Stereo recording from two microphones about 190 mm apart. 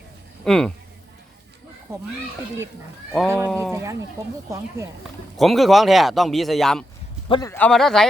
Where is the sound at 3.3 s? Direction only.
15° right (ahead or behind).